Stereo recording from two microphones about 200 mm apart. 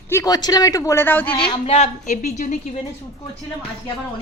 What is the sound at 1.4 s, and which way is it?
A woman's voice, 25° left (ahead or behind).